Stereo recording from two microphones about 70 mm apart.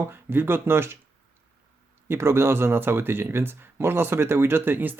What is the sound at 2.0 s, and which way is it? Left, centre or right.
Speech, right.